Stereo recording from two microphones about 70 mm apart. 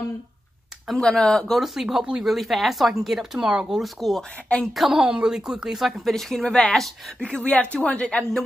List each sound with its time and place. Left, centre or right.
0.8 s a woman's voice: centre
1.6 s a woman's voice: centre
3.8 s a woman's voice: centre